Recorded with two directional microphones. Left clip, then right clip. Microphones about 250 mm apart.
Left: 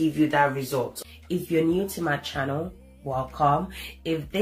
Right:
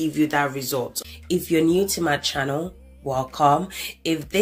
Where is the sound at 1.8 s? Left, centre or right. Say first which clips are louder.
Right 6 dB; right.